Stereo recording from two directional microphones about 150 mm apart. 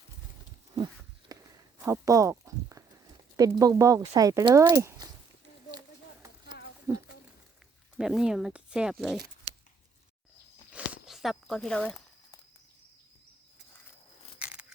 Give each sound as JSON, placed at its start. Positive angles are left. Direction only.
{"t": 1.3, "sound": "walk", "side_deg": -20}
{"t": 3.3, "sound": "speech", "side_deg": -25}
{"t": 6.9, "sound": "speech", "side_deg": -20}
{"t": 7.9, "sound": "speech", "side_deg": -5}
{"t": 10.7, "sound": "a sound", "side_deg": -10}
{"t": 14.3, "sound": "keys jangling", "side_deg": -10}